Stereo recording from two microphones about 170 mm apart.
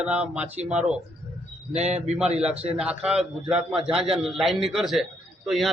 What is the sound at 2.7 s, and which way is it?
A man's voice, 5° right (ahead or behind).